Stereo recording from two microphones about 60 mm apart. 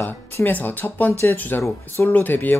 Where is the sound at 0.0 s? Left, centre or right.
Left.